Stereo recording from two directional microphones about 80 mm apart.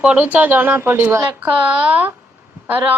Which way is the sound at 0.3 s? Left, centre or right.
Right.